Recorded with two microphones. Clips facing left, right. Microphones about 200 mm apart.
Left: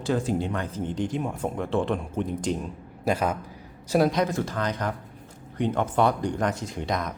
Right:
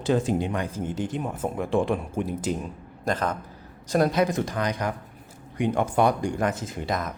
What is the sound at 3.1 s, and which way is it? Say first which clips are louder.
A man's voice: left 2 dB; 10° left (ahead or behind).